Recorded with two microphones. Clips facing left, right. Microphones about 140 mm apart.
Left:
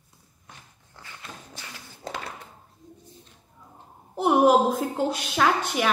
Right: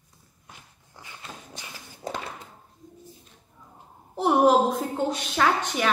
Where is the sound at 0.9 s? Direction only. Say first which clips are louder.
Even; 15° right (ahead or behind).